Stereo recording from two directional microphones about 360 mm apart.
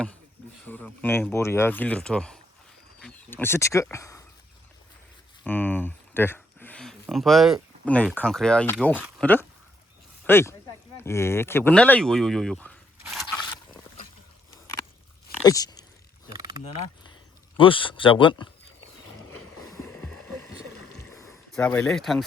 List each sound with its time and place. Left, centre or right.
0.6 s speech: centre
5.4 s speech: centre
15.4 s speech: centre
16.3 s a sound: centre
17.6 s speech: centre
18.8 s vehicle: left
19.7 s music: centre
21.2 s speech: centre